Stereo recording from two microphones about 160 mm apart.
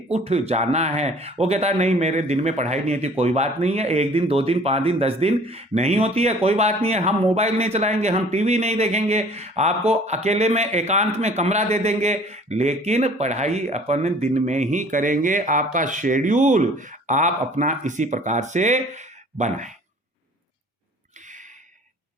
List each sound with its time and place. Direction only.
0.1 s speech: 40° right (ahead or behind)